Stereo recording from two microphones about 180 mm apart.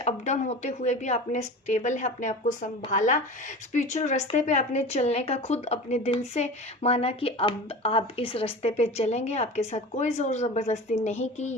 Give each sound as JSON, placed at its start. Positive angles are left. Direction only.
{"t": 0.0, "sound": "speech", "side_deg": 40}